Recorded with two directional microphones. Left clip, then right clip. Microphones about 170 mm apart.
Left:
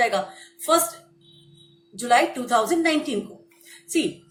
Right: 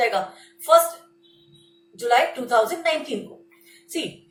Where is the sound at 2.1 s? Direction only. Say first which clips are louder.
Even; 40° left (ahead or behind).